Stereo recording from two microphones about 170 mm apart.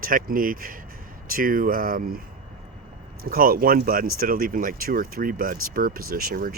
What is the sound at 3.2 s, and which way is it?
Speech, 60° right (ahead or behind).